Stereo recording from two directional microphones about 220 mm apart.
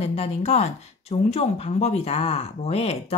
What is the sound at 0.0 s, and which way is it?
Speech, 30° left (ahead or behind).